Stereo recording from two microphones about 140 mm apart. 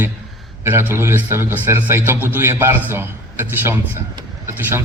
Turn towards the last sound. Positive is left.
turn(degrees=-20)  # may be behind; listen again after turning